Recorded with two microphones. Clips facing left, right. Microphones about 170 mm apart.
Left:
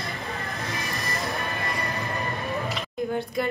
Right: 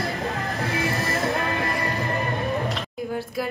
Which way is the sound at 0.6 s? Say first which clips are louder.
Right 7 dB; 65° right (ahead or behind).